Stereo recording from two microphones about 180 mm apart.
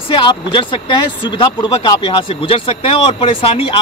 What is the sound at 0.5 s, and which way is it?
Speech, 25° left (ahead or behind).